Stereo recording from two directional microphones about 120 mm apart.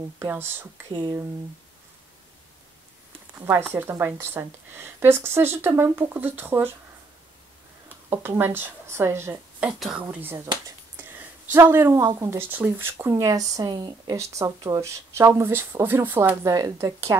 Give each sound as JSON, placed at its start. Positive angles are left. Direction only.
{"t": 0.2, "sound": "speech", "side_deg": -20}
{"t": 3.3, "sound": "speech", "side_deg": -15}
{"t": 8.1, "sound": "speech", "side_deg": -20}
{"t": 9.6, "sound": "speech", "side_deg": -5}
{"t": 10.1, "sound": "speech", "side_deg": -15}
{"t": 11.0, "sound": "a sound", "side_deg": -15}
{"t": 12.2, "sound": "speech", "side_deg": -20}
{"t": 14.1, "sound": "speech", "side_deg": -25}